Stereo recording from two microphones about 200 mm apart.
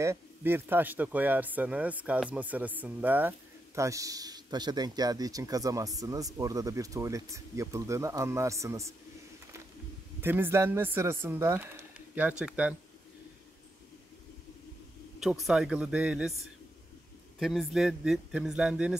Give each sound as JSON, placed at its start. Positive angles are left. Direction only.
{"t": 0.0, "sound": "speech", "side_deg": -10}
{"t": 10.2, "sound": "speech", "side_deg": -10}
{"t": 15.1, "sound": "a man's voice", "side_deg": 0}
{"t": 17.4, "sound": "a man's voice", "side_deg": 0}